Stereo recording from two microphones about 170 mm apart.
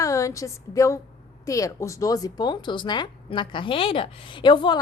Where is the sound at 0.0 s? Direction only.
20° left (ahead or behind).